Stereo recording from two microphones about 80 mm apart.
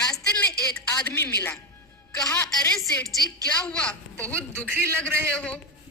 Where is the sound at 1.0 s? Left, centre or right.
Left.